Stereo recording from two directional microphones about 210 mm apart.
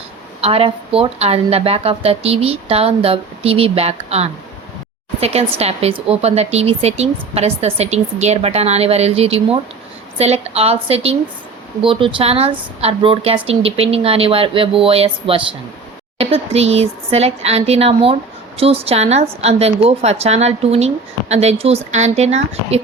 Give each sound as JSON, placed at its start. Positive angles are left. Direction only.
{"t": 0.4, "sound": "speech", "side_deg": -25}